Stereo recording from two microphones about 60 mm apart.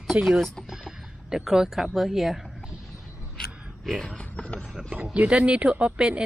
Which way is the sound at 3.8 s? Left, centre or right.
Centre.